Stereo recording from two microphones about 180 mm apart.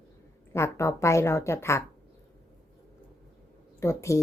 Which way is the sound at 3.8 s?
15° left (ahead or behind).